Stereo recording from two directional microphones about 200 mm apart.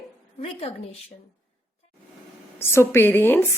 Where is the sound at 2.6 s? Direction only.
10° left (ahead or behind).